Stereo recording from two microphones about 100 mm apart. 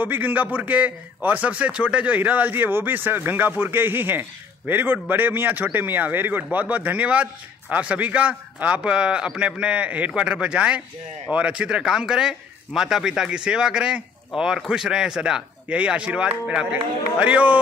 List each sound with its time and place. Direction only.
0.0 s a man's voice: 20° right (ahead or behind)